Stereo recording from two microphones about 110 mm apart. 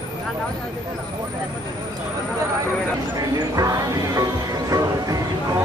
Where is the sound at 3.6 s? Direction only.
35° right (ahead or behind).